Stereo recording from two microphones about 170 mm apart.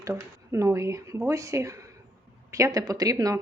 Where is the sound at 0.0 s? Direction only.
15° right (ahead or behind).